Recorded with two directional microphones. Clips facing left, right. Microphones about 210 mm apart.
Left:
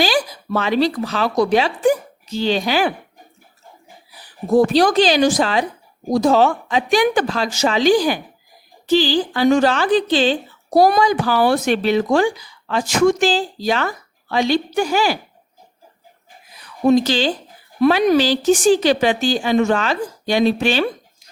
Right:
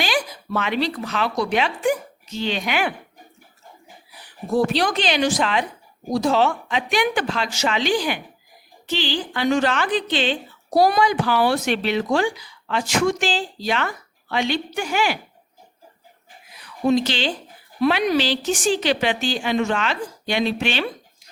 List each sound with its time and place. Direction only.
0.0 s speech: 35° left (ahead or behind)
4.5 s speech: 40° left (ahead or behind)
10.8 s speech: 45° left (ahead or behind)
16.8 s speech: 40° left (ahead or behind)